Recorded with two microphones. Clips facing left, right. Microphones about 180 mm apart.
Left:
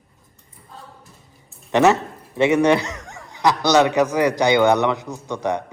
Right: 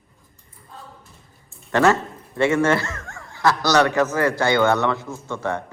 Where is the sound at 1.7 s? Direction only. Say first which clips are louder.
Left 2 dB; 20° left (ahead or behind).